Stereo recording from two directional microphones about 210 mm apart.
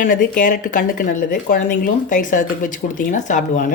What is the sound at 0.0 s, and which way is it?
Speech, 40° left (ahead or behind).